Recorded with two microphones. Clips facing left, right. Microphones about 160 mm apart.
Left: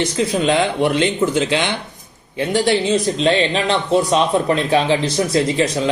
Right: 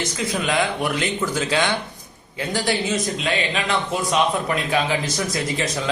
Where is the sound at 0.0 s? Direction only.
30° left (ahead or behind).